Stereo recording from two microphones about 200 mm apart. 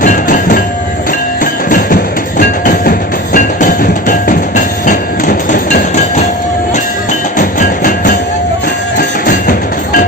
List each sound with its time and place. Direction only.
0.0 s train: 40° left (ahead or behind)
2.4 s train: 45° left (ahead or behind)
7.3 s music: 40° left (ahead or behind)